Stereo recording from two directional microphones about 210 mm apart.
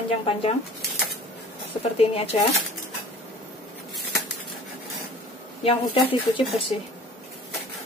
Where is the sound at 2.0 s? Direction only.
25° left (ahead or behind).